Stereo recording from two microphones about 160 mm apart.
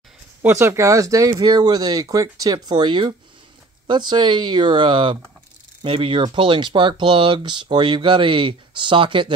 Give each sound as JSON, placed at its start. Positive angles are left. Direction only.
{"t": 0.4, "sound": "speech", "side_deg": -15}